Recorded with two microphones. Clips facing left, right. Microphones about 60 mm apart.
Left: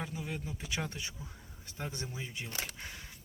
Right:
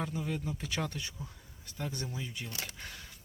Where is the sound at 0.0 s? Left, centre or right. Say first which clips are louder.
Right 4 dB; centre.